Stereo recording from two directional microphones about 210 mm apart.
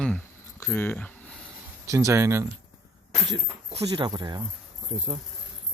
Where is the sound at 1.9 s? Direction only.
15° right (ahead or behind).